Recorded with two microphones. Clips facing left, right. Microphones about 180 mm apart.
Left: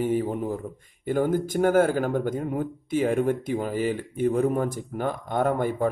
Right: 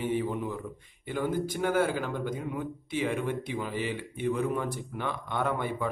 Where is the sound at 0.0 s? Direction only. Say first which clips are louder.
Left 5 dB; 45° left (ahead or behind).